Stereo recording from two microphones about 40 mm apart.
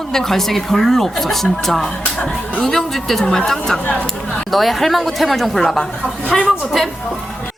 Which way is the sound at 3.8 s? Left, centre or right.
Left.